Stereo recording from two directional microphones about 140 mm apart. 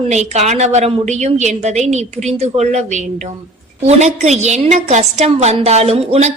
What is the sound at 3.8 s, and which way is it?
A woman's voice, 55° right (ahead or behind).